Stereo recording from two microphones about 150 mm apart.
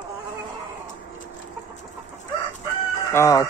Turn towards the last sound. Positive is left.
turn(degrees=20)  # may be behind; listen again after turning